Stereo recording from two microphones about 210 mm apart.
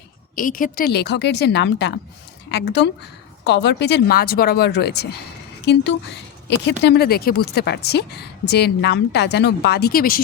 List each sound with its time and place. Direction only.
0.3 s a woman's voice: 40° left (ahead or behind)